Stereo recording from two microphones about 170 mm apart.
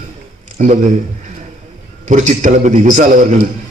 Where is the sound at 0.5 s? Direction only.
45° right (ahead or behind).